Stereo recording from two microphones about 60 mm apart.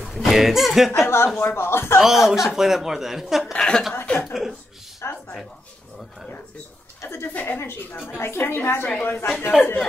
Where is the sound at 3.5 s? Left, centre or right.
Centre.